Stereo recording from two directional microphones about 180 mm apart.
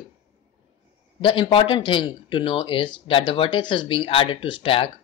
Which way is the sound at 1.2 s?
25° left (ahead or behind).